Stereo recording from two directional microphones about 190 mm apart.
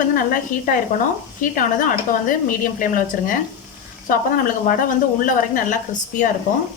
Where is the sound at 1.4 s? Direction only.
45° left (ahead or behind).